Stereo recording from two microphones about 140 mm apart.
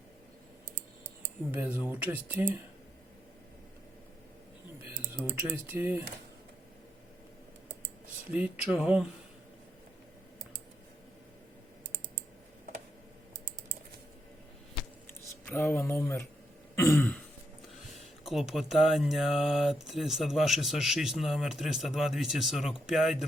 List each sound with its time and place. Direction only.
1.5 s speech: 15° right (ahead or behind)
5.0 s speech: 15° right (ahead or behind)
8.3 s speech: 10° right (ahead or behind)
15.0 s a sound: 15° left (ahead or behind)
16.7 s throat clearing: 20° left (ahead or behind)
18.3 s speech: centre (ahead or behind)